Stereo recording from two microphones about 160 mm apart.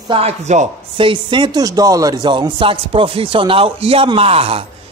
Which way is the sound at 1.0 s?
30° right (ahead or behind).